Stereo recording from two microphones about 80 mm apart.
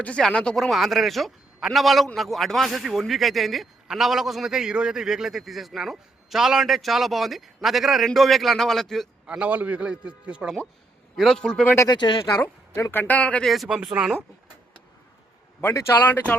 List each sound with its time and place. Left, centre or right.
0.0 s a man's voice: centre
9.2 s a man's voice: centre
11.2 s a man's voice: centre
11.9 s speech: left
12.4 s a woman's voice: left; by 13.5 s centre
13.7 s a man's voice: centre
15.6 s a man's voice: left
16.0 s a woman's voice: left